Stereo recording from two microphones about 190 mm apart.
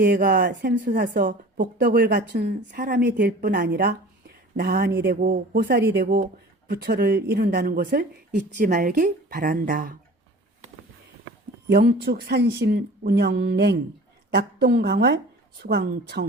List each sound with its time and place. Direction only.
0.0 s speech: 50° right (ahead or behind)
8.5 s speech: 45° right (ahead or behind)
11.7 s a woman's voice: 60° right (ahead or behind)